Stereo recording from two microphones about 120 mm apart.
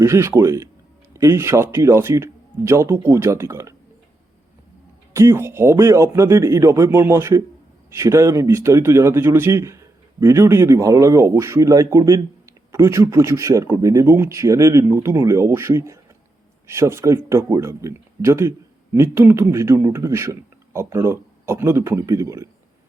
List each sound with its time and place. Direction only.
0.0 s speech: 25° right (ahead or behind)
5.1 s speech: 20° right (ahead or behind)